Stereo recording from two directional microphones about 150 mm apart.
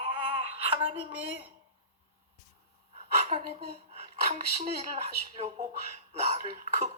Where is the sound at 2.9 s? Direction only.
45° right (ahead or behind).